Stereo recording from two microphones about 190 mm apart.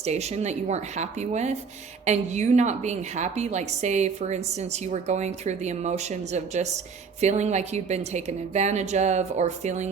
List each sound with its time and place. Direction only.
0.0 s a woman's voice: 35° right (ahead or behind)